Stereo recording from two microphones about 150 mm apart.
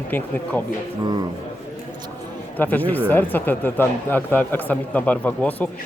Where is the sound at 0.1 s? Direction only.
15° left (ahead or behind).